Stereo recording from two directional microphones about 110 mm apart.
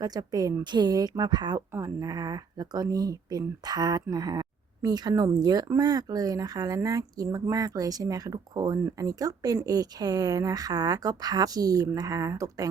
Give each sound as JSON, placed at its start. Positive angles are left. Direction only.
{"t": 0.0, "sound": "speech", "side_deg": -35}
{"t": 1.7, "sound": "speech", "side_deg": -30}